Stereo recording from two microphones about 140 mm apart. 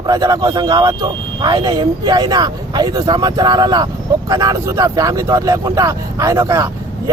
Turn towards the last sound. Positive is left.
turn(degrees=-20)  # may be behind; listen again after turning